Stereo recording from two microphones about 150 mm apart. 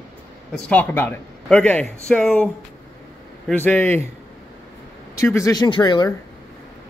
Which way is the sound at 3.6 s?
10° left (ahead or behind).